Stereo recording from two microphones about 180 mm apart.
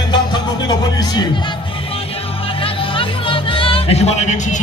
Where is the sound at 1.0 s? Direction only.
25° left (ahead or behind).